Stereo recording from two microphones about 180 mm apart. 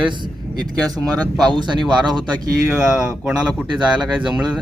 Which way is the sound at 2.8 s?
5° right (ahead or behind).